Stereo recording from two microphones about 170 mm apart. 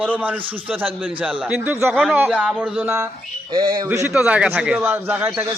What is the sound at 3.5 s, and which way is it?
Speech, 25° right (ahead or behind).